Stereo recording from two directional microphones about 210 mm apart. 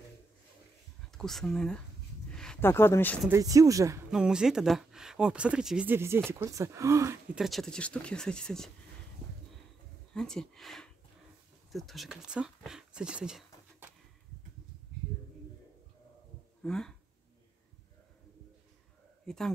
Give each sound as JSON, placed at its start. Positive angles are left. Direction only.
{"t": 1.1, "sound": "speech", "side_deg": 0}
{"t": 3.3, "sound": "speech", "side_deg": -15}
{"t": 4.1, "sound": "speech", "side_deg": -5}
{"t": 7.3, "sound": "speech", "side_deg": 0}
{"t": 10.1, "sound": "speech", "side_deg": 5}
{"t": 16.6, "sound": "speech", "side_deg": 5}
{"t": 19.2, "sound": "a man's voice", "side_deg": 0}